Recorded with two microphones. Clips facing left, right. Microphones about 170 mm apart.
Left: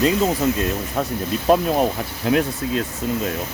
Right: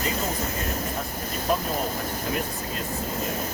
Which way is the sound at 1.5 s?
90° left.